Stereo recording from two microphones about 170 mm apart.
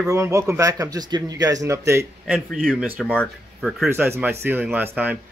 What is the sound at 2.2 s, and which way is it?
Speech, 5° right (ahead or behind).